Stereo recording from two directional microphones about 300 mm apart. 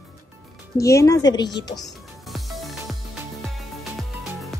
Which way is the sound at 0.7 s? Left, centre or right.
Centre.